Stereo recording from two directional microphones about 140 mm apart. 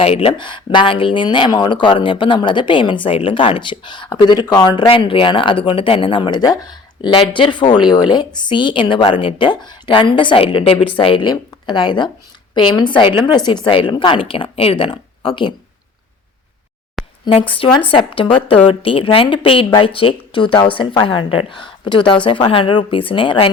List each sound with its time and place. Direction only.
0.0 s speech: 45° left (ahead or behind)
0.3 s speech: 35° left (ahead or behind)
17.0 s a sound: centre (ahead or behind)
17.5 s speech: 40° left (ahead or behind)